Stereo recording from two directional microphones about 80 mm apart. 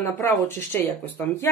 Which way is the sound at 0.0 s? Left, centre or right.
Left.